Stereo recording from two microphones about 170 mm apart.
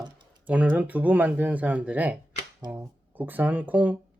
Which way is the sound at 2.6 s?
25° right (ahead or behind).